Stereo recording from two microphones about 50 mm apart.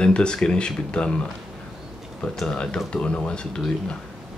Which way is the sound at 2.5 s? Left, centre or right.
Centre.